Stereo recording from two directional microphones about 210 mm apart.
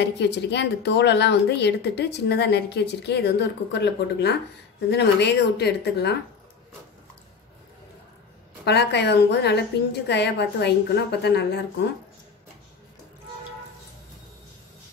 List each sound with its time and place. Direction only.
0.0 s a woman's voice: 55° left (ahead or behind)
8.6 s a woman's voice: 55° left (ahead or behind)